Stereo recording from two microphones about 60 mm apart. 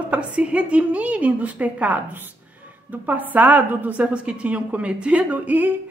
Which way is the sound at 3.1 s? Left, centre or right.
Right.